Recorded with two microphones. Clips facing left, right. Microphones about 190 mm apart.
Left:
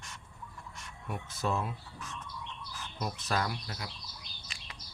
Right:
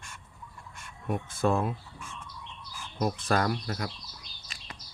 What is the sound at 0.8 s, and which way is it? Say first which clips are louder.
Speech: right 8 dB; 50° right (ahead or behind).